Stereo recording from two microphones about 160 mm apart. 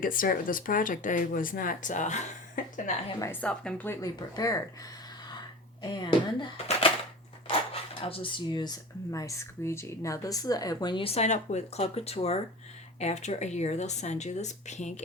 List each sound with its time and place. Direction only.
0.0 s a woman's voice: 60° left (ahead or behind)
3.4 s speech: 5° left (ahead or behind)
4.0 s speech: 20° left (ahead or behind)
5.8 s speech: 25° left (ahead or behind)
6.7 s a sound: 35° left (ahead or behind)
7.4 s speech: 35° left (ahead or behind)